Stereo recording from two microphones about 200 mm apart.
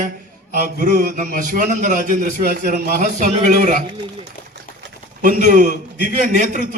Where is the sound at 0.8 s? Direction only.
40° right (ahead or behind).